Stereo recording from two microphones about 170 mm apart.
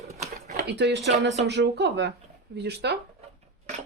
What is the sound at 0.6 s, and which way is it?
Speech, 85° right.